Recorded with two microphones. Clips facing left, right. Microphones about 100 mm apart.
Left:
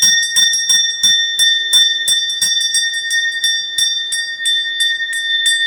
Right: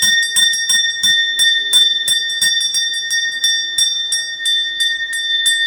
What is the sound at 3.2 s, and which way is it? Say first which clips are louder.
Bell: left 1 dB; 30° right (ahead or behind).